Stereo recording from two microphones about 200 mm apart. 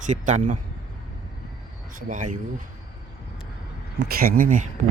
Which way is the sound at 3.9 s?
50° right (ahead or behind).